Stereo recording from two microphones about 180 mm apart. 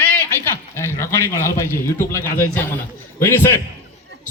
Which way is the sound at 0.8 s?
15° left (ahead or behind).